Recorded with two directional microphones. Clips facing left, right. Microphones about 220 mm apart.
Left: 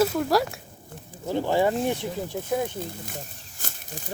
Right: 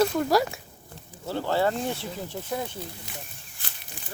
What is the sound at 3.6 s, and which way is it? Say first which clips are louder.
Snake: left 7 dB; 45° left (ahead or behind).